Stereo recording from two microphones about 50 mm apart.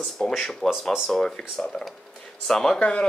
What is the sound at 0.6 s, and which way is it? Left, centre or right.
Speech, centre.